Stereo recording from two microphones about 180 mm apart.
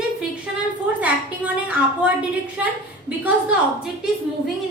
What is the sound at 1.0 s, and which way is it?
A woman's voice, 10° right (ahead or behind).